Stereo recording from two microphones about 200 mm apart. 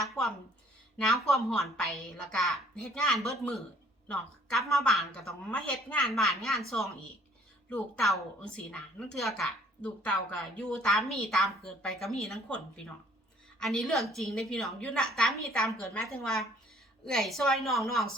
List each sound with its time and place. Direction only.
0.9 s a woman's voice: centre (ahead or behind)